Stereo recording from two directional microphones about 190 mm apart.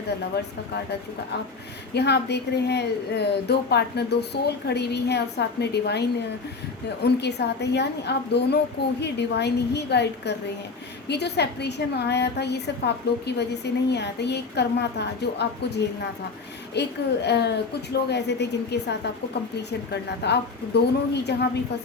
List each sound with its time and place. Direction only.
0.3 s a woman's voice: 60° left (ahead or behind)